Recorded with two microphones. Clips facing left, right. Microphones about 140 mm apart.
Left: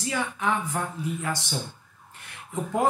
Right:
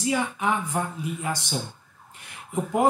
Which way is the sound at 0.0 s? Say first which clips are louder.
Right 3 dB; 20° right (ahead or behind).